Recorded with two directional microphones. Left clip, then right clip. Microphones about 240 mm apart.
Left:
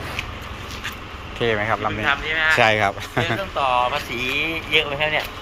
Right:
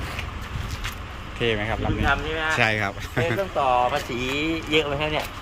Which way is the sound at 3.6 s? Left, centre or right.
Right.